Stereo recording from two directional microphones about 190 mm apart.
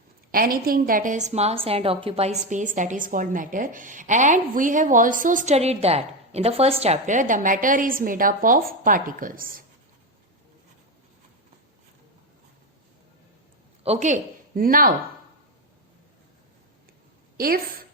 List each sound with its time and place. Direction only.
0.3 s a woman's voice: 50° right (ahead or behind)
13.8 s speech: 35° right (ahead or behind)
17.3 s a woman's voice: 50° right (ahead or behind)